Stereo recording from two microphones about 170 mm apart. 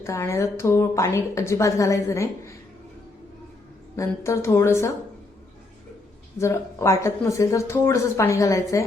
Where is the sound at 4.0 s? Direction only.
15° left (ahead or behind).